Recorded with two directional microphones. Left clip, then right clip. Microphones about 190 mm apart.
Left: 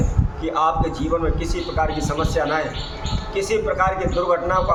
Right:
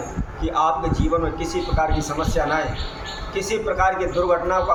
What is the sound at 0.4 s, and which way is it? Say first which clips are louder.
A man's voice: even; 10° left (ahead or behind).